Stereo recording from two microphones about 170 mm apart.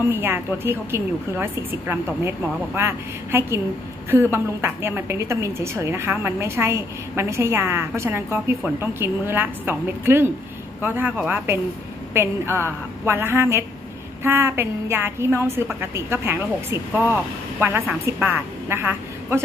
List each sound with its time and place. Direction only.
0.1 s a woman's voice: 15° right (ahead or behind)
13.0 s a woman's voice: 15° right (ahead or behind)